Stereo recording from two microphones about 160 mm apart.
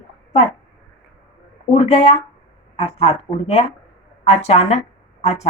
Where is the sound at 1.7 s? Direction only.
45° left (ahead or behind).